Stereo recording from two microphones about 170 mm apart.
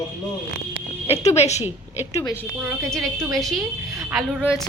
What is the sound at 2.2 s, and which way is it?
Speech, 10° left (ahead or behind).